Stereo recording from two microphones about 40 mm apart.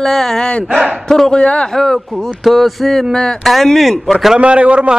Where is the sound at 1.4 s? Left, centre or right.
Left.